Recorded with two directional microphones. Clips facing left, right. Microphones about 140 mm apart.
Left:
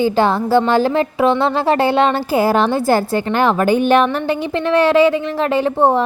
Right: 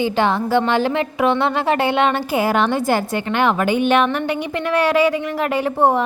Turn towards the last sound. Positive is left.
turn(degrees=30)  # may be behind; listen again after turning